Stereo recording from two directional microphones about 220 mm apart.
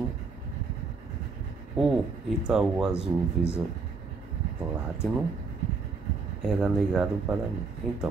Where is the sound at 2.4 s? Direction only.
Centre (ahead or behind).